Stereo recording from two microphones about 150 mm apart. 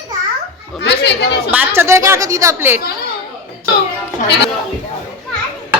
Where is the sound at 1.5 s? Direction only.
15° right (ahead or behind).